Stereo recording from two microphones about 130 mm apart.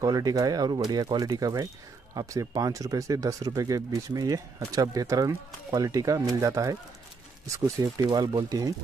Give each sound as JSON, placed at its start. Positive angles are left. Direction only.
{"t": 0.0, "sound": "speech", "side_deg": -30}